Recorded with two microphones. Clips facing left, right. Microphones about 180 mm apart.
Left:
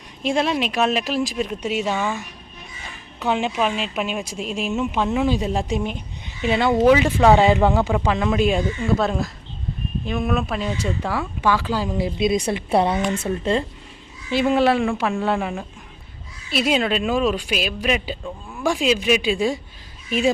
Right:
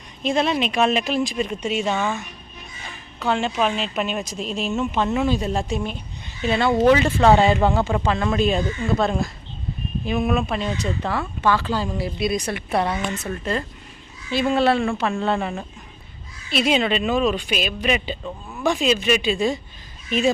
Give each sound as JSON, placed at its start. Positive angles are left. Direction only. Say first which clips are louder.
{"t": 0.2, "sound": "speech", "louder": "even", "side_deg": 10}
{"t": 3.2, "sound": "speech", "louder": "even", "side_deg": 15}